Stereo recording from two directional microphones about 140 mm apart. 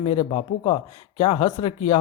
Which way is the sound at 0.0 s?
40° left (ahead or behind).